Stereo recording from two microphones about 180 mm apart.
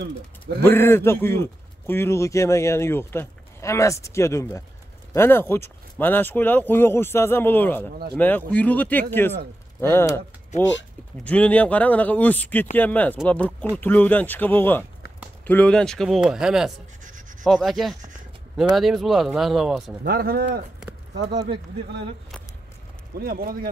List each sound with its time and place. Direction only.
0.6 s speech: 10° left (ahead or behind)
7.9 s speech: 60° right (ahead or behind)
8.2 s speech: 10° left (ahead or behind)
11.2 s a man's voice: 10° left (ahead or behind)
20.0 s speech: 60° right (ahead or behind)
23.1 s speech: 55° right (ahead or behind)